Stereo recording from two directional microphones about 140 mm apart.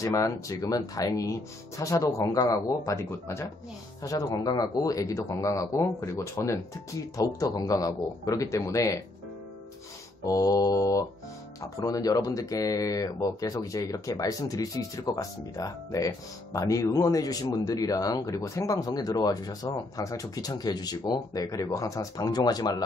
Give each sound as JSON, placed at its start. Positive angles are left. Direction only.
{"t": 0.0, "sound": "speech", "side_deg": 25}
{"t": 10.2, "sound": "speech", "side_deg": 25}